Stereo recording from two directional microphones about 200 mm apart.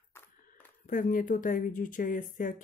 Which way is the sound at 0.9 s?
40° left (ahead or behind).